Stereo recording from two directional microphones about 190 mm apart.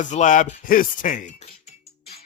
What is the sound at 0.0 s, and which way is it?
Speech, 40° left (ahead or behind).